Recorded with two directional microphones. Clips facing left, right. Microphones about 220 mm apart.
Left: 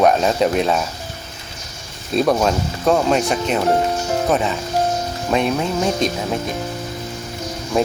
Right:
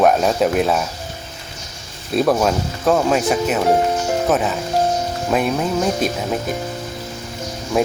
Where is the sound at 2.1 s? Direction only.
Centre (ahead or behind).